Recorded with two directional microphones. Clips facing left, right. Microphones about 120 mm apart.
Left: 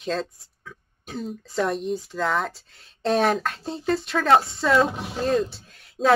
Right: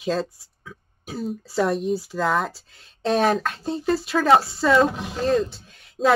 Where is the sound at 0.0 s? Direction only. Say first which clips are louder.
Right 3 dB; 5° right (ahead or behind).